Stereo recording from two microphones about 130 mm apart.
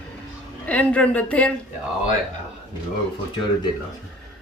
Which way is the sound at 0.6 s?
10° left (ahead or behind).